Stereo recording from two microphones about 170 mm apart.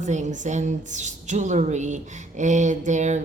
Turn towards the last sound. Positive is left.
turn(degrees=-45)  # may be behind; listen again after turning